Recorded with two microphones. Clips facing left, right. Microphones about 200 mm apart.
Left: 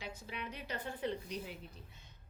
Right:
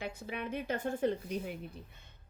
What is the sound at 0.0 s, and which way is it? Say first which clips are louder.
A woman's voice: right 6 dB; 55° right (ahead or behind).